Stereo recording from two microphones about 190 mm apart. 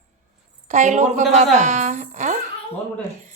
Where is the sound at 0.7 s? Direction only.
40° right (ahead or behind).